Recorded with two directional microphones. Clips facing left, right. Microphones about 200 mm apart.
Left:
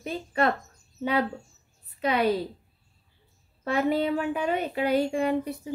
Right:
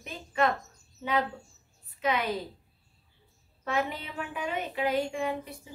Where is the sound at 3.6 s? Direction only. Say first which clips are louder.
Left 7 dB; 35° left (ahead or behind).